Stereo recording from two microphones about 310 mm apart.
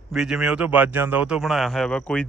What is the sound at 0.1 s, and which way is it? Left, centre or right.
Speech, centre.